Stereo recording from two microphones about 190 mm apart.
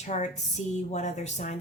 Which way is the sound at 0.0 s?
40° left (ahead or behind).